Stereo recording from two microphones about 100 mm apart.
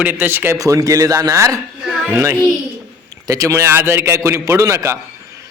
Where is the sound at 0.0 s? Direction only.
20° right (ahead or behind).